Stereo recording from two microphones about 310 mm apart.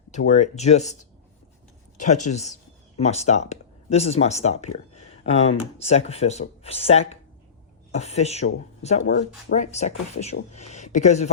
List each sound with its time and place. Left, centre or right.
0.1 s speech: left
2.0 s speech: left